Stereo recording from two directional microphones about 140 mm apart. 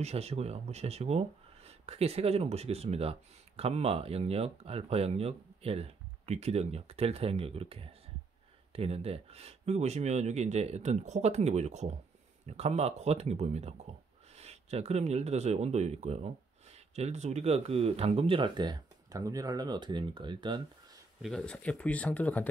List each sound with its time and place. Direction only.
0.0 s speech: 50° right (ahead or behind)
21.2 s speech: 5° left (ahead or behind)